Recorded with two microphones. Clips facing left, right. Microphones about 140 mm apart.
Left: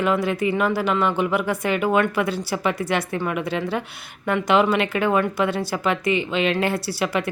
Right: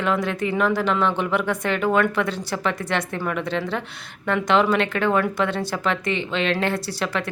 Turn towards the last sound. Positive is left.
turn(degrees=10)  # may be behind; listen again after turning